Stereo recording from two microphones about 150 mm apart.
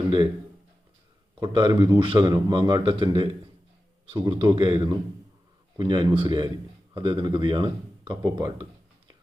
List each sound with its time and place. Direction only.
1.4 s a man's voice: 35° right (ahead or behind)